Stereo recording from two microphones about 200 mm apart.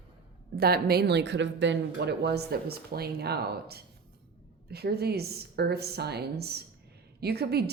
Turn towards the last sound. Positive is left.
turn(degrees=-55)  # may be behind; listen again after turning